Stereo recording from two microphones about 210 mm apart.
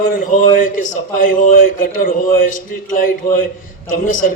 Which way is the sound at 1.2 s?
40° left (ahead or behind).